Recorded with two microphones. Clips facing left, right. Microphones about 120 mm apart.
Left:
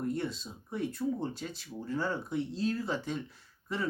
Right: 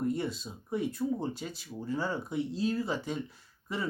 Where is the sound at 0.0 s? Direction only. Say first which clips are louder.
Right 2 dB; 5° right (ahead or behind).